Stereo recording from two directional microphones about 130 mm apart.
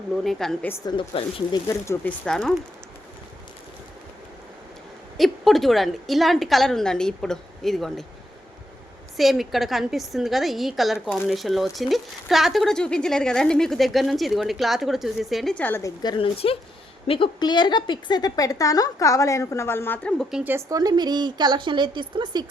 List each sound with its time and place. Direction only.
0.3 s speech: 5° left (ahead or behind)
0.9 s speech: 40° left (ahead or behind)
1.6 s a woman's voice: 20° left (ahead or behind)
2.2 s speech: 5° left (ahead or behind)
5.1 s speech: centre (ahead or behind)
9.1 s speech: centre (ahead or behind)
15.5 s speech: 15° left (ahead or behind)
16.1 s a woman's voice: 45° left (ahead or behind); by 20.2 s 10° left (ahead or behind)
20.3 s speech: 15° right (ahead or behind)
20.7 s a woman's voice: 30° right (ahead or behind)